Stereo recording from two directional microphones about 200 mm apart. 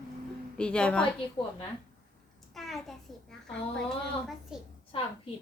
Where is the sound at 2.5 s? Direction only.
Centre (ahead or behind).